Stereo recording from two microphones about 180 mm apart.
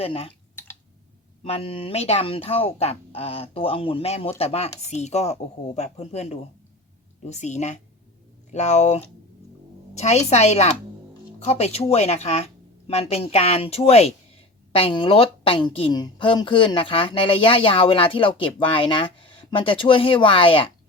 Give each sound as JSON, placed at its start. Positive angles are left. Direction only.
{"t": 0.0, "sound": "speech", "side_deg": 35}
{"t": 1.5, "sound": "a woman's voice", "side_deg": 35}